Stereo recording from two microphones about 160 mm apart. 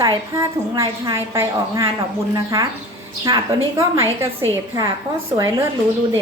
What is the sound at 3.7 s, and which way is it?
A woman's voice, 15° right (ahead or behind).